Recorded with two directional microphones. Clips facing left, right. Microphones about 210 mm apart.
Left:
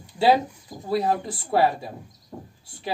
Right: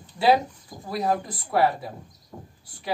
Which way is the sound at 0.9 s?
30° left (ahead or behind).